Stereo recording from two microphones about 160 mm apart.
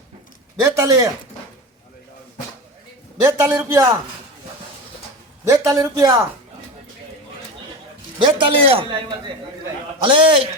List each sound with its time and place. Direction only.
0.6 s a man's voice: 20° right (ahead or behind)
3.2 s a man's voice: 15° right (ahead or behind)
5.5 s a man's voice: 20° right (ahead or behind)
8.2 s a man's voice: 30° right (ahead or behind)